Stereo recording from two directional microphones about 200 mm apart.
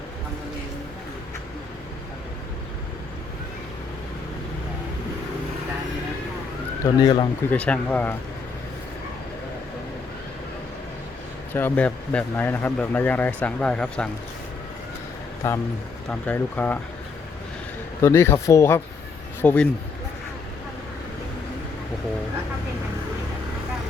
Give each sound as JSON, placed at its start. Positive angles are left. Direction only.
{"t": 6.8, "sound": "speech", "side_deg": 25}
{"t": 7.5, "sound": "speech", "side_deg": 5}
{"t": 11.5, "sound": "speech", "side_deg": 10}
{"t": 15.4, "sound": "speech", "side_deg": 10}
{"t": 18.0, "sound": "speech", "side_deg": 10}